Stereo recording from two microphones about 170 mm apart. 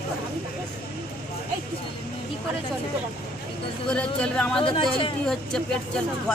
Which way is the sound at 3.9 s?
5° left (ahead or behind).